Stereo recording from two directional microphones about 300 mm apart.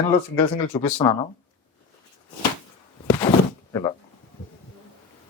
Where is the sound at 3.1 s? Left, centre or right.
Centre.